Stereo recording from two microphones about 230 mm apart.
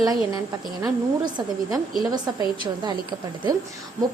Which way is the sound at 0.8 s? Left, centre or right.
Centre.